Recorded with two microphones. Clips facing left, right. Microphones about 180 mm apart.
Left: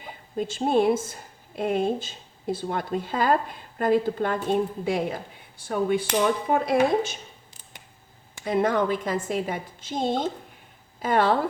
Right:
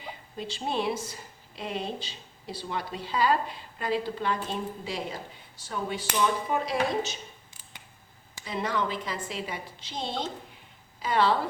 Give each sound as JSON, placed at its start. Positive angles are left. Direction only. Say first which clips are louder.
{"t": 0.3, "sound": "a woman's voice", "louder": "left 9 dB", "side_deg": 50}
{"t": 8.4, "sound": "a woman's voice", "louder": "left 8 dB", "side_deg": 50}